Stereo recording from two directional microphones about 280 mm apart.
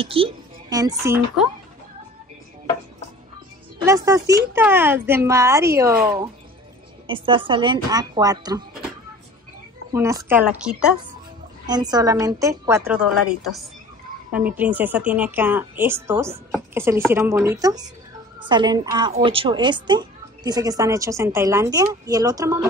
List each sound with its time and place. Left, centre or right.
0.0 s a woman's voice: centre
3.8 s a woman's voice: centre
9.9 s a woman's voice: centre
11.6 s a woman's voice: centre